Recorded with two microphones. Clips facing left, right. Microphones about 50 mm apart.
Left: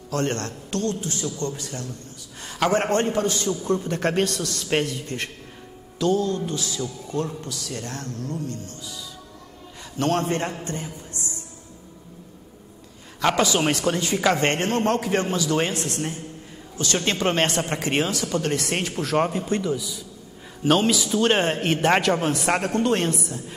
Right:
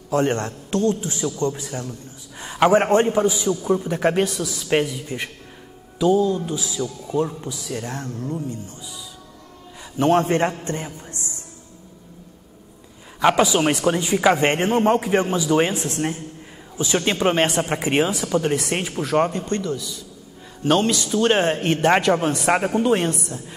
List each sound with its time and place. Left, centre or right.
0.1 s a man's voice: centre
13.2 s a woman's voice: centre